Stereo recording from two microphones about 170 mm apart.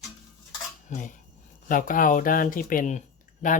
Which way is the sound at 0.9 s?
45° left (ahead or behind).